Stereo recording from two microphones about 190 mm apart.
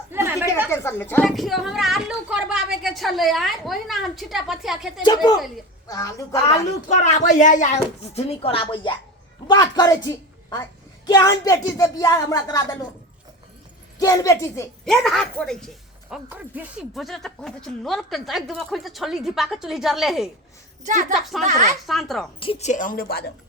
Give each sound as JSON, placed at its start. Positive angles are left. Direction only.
{"t": 0.1, "sound": "a sound", "side_deg": -10}
{"t": 0.7, "sound": "speech", "side_deg": 10}
{"t": 1.2, "sound": "speech", "side_deg": 0}
{"t": 5.0, "sound": "a woman's voice", "side_deg": 20}
{"t": 6.8, "sound": "a woman's voice", "side_deg": 40}
{"t": 14.0, "sound": "speech", "side_deg": 15}
{"t": 14.8, "sound": "speech", "side_deg": 0}
{"t": 21.4, "sound": "speech", "side_deg": -40}
{"t": 21.8, "sound": "speech", "side_deg": 0}
{"t": 22.4, "sound": "a woman's voice", "side_deg": 30}